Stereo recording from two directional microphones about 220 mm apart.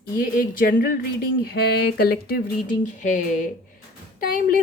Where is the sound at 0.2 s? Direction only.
40° left (ahead or behind).